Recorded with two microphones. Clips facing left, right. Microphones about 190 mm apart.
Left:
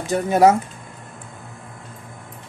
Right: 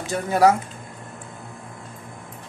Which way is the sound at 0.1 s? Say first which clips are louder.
Left 3 dB; 20° left (ahead or behind).